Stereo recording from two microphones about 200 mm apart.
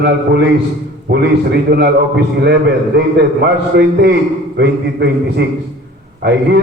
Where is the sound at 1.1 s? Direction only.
50° right (ahead or behind).